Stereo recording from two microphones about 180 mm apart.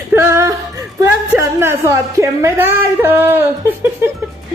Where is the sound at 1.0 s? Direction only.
15° right (ahead or behind).